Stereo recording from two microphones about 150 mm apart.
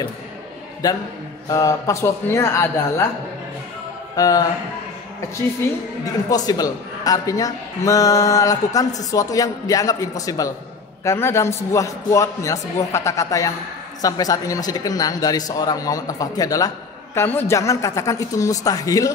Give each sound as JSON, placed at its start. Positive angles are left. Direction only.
{"t": 0.8, "sound": "a man's voice", "side_deg": 25}
{"t": 4.2, "sound": "a man's voice", "side_deg": 25}
{"t": 6.3, "sound": "a man's voice", "side_deg": 25}